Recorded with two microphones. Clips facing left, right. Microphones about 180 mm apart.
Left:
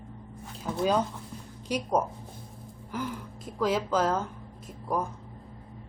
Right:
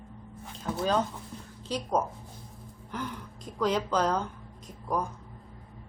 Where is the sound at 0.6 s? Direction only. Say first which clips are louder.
Left 1 dB; 10° left (ahead or behind).